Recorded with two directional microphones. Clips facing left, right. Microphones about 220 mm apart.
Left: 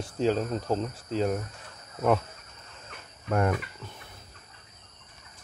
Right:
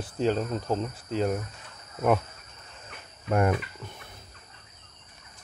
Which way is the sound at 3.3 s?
15° right (ahead or behind).